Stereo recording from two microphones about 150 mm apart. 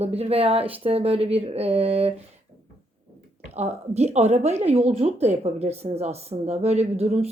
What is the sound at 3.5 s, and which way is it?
Speech, 45° right (ahead or behind).